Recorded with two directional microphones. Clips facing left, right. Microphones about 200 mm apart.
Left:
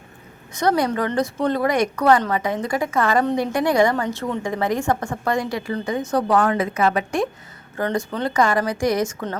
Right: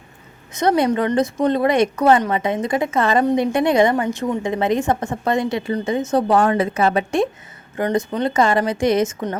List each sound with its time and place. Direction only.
0.5 s a woman's voice: 20° right (ahead or behind)
7.8 s a woman's voice: 15° right (ahead or behind)